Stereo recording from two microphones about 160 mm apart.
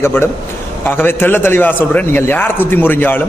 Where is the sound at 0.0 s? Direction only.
15° left (ahead or behind).